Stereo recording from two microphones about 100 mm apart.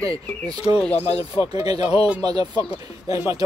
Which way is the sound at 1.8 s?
80° left.